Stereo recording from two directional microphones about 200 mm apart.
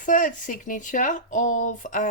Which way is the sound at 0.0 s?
40° left (ahead or behind).